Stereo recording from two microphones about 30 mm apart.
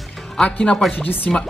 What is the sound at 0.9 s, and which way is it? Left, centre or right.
Speech, left.